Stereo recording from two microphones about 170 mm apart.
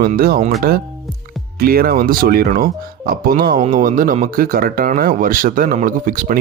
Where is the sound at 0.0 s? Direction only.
60° right (ahead or behind).